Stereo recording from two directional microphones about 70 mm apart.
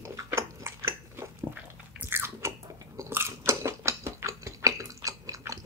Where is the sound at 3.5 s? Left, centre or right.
Right.